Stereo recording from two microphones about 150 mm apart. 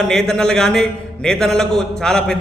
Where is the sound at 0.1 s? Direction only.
5° left (ahead or behind).